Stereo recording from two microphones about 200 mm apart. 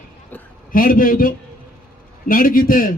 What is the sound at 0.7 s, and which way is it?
A man's voice, 45° left (ahead or behind).